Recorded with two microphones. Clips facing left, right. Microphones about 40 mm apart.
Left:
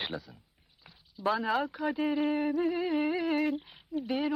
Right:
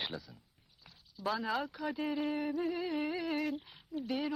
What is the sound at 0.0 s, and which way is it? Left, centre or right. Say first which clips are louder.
Speech: left 4 dB; centre.